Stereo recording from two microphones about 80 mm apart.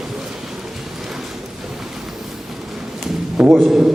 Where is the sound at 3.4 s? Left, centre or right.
Centre.